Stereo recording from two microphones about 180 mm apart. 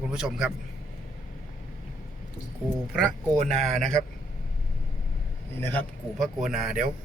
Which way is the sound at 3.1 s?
40° right (ahead or behind).